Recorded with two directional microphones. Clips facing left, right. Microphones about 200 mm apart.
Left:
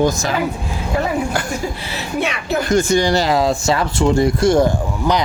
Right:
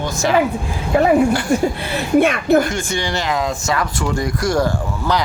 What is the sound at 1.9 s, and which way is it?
Speech, 50° right (ahead or behind).